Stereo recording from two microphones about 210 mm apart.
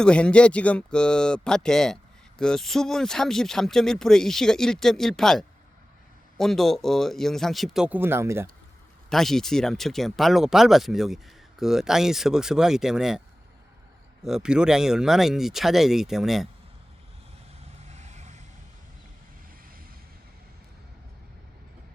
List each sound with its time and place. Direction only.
0.0 s speech: 5° left (ahead or behind); by 8.4 s 10° right (ahead or behind)
9.0 s speech: centre (ahead or behind)
14.3 s speech: 5° right (ahead or behind)
17.8 s vehicle: 35° right (ahead or behind)